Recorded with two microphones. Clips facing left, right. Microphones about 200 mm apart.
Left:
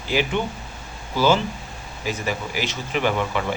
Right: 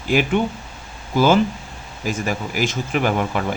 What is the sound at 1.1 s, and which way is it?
Speech, 55° right (ahead or behind).